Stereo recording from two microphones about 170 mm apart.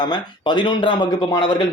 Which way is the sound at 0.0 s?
25° left (ahead or behind).